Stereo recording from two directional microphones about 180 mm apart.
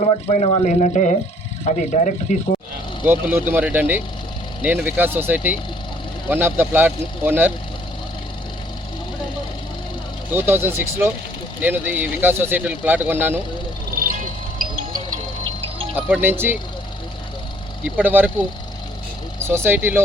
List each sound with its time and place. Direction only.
0.0 s speech: 40° left (ahead or behind)
3.0 s speech: 10° right (ahead or behind)
10.3 s speech: 10° right (ahead or behind)
13.9 s vehicle: 50° right (ahead or behind)
16.0 s speech: 10° right (ahead or behind)
17.8 s speech: 10° right (ahead or behind)